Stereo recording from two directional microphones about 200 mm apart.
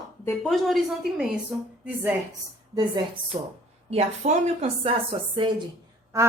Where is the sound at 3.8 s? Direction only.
35° right (ahead or behind); by 6.3 s 15° right (ahead or behind).